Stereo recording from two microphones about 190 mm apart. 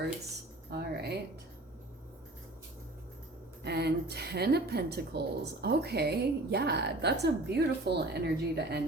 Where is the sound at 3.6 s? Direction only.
60° right (ahead or behind).